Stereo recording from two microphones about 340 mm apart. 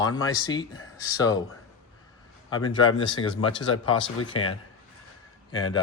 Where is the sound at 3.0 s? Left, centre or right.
Centre.